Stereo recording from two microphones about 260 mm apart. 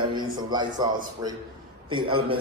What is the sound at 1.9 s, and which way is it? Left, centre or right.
Speech, centre.